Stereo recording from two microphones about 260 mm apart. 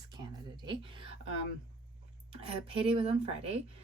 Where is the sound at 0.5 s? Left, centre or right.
Centre.